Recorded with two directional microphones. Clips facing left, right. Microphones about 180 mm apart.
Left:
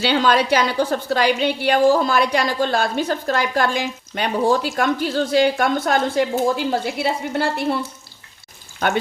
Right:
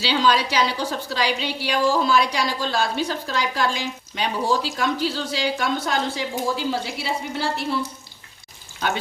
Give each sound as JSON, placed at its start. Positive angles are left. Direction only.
{"t": 0.0, "sound": "a woman's voice", "side_deg": 55}